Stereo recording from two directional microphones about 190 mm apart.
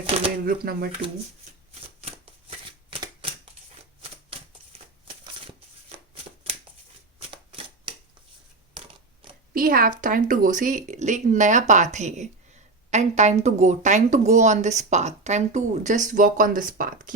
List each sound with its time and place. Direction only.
0.1 s speech: 35° right (ahead or behind)
0.4 s speech: 50° right (ahead or behind)
2.9 s typewriter: 30° right (ahead or behind)
5.0 s shuffling cards: 25° right (ahead or behind)
9.6 s speech: 50° right (ahead or behind)